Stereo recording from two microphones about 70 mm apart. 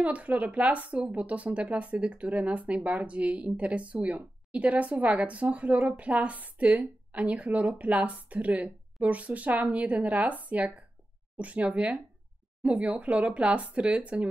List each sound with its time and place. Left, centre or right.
0.0 s speech: right